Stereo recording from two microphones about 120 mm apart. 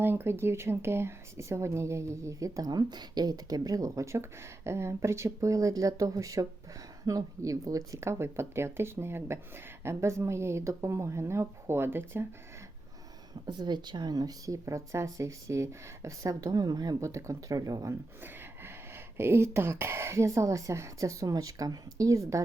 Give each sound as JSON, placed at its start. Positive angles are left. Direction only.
{"t": 0.0, "sound": "speech", "side_deg": -20}
{"t": 13.4, "sound": "speech", "side_deg": -35}
{"t": 18.2, "sound": "speech", "side_deg": -20}